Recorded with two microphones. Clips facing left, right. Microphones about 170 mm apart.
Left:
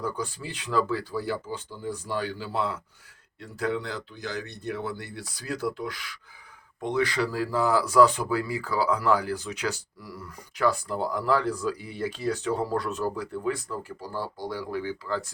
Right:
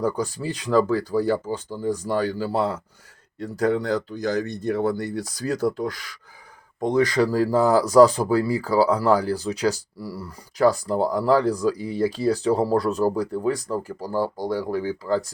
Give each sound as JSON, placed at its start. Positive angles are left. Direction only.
{"t": 0.0, "sound": "speech", "side_deg": -40}